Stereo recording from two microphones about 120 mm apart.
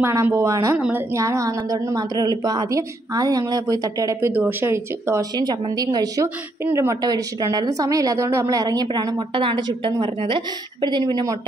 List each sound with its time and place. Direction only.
0.0 s a woman's voice: 25° right (ahead or behind)
0.7 s a woman's voice: 5° right (ahead or behind)
1.1 s a woman's voice: 25° right (ahead or behind)
5.4 s a woman's voice: 35° right (ahead or behind)
6.2 s a woman's voice: 20° right (ahead or behind)
7.0 s a woman's voice: 35° right (ahead or behind)